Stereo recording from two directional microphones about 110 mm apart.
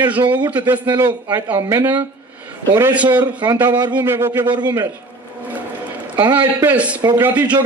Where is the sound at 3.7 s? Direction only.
40° right (ahead or behind).